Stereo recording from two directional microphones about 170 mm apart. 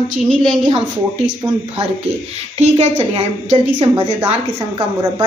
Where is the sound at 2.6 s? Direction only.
35° right (ahead or behind).